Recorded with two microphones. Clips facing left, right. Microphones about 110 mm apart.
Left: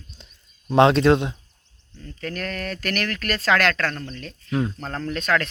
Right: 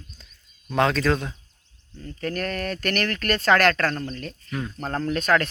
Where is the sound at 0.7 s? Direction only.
25° left (ahead or behind).